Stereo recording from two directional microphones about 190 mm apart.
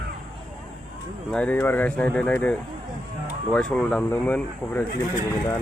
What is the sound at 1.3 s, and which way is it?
Speech, 5° left (ahead or behind).